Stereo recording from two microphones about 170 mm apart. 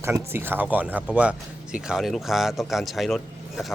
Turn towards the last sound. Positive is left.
turn(degrees=0)  # may be behind; listen again after turning